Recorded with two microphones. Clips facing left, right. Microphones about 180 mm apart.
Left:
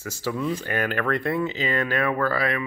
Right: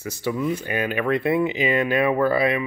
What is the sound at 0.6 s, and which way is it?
Speech, 10° right (ahead or behind).